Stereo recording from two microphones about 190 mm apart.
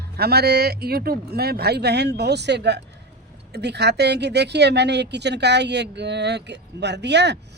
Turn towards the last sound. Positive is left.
turn(degrees=-65)  # may be behind; listen again after turning